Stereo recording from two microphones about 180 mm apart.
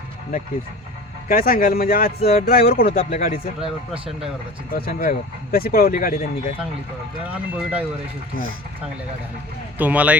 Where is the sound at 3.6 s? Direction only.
5° right (ahead or behind).